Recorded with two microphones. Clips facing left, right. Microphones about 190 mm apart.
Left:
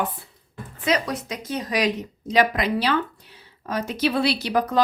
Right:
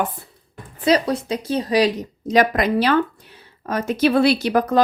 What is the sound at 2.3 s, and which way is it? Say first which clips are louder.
A woman's voice: right 4 dB; 45° right (ahead or behind).